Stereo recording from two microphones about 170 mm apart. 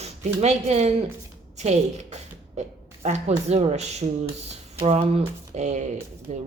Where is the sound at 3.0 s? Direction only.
45° right (ahead or behind).